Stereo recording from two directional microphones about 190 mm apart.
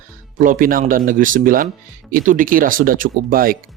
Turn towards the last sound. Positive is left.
turn(degrees=-50)  # may be behind; listen again after turning